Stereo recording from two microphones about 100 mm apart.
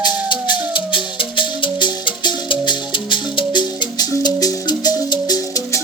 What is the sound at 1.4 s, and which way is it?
Music, 55° left (ahead or behind).